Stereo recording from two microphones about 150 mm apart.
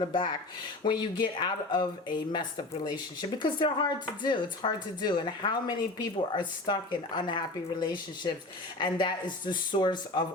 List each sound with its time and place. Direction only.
0.0 s speech: 35° left (ahead or behind)